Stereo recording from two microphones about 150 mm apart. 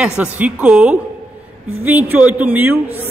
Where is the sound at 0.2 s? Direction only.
10° right (ahead or behind).